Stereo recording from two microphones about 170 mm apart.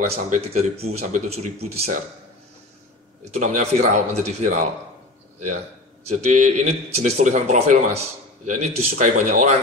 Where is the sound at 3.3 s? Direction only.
45° right (ahead or behind).